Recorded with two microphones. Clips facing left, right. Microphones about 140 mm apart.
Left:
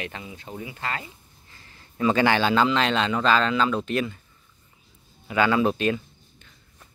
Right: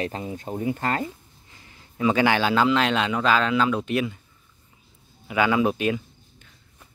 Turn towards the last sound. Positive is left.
turn(degrees=-10)  # may be behind; listen again after turning